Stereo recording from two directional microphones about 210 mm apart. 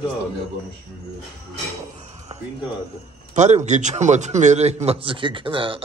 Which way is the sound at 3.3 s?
35° right (ahead or behind).